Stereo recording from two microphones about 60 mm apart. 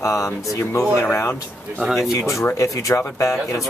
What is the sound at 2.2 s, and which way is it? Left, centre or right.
Speech, left.